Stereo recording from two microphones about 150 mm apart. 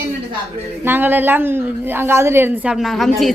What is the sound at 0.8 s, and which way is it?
A woman's voice, 15° right (ahead or behind).